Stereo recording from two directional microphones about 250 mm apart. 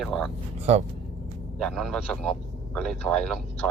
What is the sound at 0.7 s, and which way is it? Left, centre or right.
Speech, right.